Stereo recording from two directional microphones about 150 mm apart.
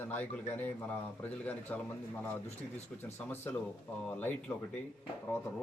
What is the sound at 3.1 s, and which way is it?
Speech, 15° left (ahead or behind).